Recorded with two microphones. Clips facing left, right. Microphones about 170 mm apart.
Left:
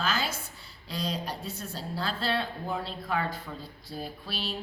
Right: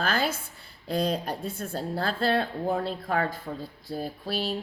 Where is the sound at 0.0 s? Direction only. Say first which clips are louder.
Right 4 dB; 55° right (ahead or behind).